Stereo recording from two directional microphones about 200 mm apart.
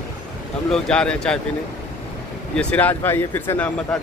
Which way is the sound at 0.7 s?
5° left (ahead or behind).